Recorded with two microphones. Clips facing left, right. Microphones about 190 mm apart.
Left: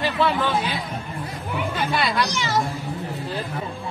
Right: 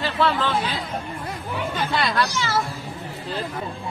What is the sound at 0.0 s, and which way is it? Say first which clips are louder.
Speech: left 1 dB; 15° left (ahead or behind).